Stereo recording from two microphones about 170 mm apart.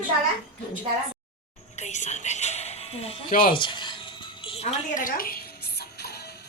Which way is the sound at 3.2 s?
55° left (ahead or behind).